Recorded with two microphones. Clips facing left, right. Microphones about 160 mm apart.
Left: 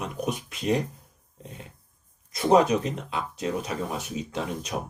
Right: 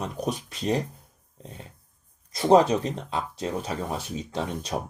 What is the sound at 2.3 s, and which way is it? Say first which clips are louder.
Speech: right 1 dB; 30° right (ahead or behind).